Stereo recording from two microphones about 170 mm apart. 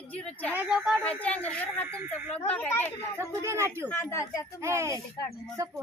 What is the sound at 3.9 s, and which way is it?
Speech, 15° left (ahead or behind).